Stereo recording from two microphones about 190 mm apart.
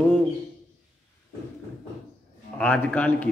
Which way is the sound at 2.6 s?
5° left (ahead or behind).